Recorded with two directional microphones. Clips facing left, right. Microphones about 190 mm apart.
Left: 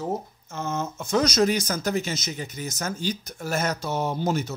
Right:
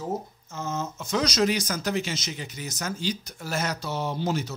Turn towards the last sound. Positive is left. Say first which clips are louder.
# left 2 dB
turn(degrees=50)  # may be behind; listen again after turning